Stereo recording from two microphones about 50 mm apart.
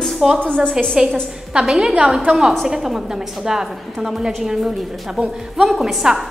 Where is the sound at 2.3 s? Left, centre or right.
Centre.